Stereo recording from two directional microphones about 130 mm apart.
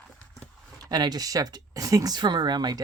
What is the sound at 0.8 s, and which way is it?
Speech, 30° right (ahead or behind).